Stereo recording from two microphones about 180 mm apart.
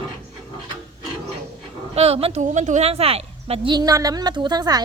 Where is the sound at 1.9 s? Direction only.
35° right (ahead or behind).